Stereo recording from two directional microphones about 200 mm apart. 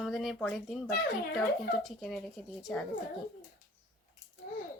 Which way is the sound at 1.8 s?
Centre (ahead or behind).